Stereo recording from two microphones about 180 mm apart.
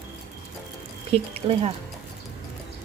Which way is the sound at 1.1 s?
35° right (ahead or behind).